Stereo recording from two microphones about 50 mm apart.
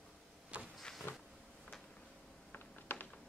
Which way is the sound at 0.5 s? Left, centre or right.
Right.